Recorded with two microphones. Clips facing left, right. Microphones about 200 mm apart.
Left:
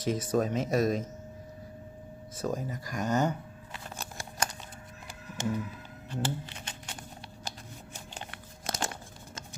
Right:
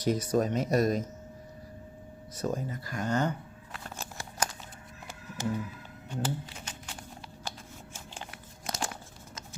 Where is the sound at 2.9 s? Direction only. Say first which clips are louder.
Left 1 dB; 15° left (ahead or behind).